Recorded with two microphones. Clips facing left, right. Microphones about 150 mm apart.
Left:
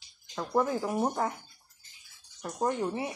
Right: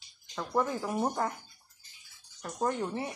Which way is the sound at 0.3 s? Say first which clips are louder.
Left 2 dB; 10° left (ahead or behind).